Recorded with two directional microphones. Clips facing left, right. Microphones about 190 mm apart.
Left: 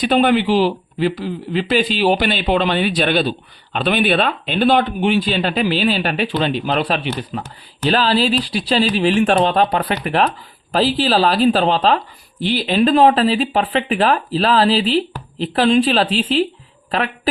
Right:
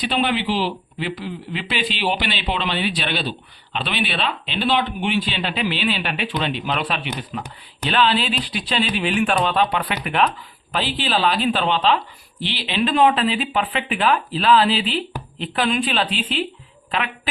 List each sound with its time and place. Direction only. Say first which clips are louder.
0.0 s speech: left 7 dB; 45° left (ahead or behind)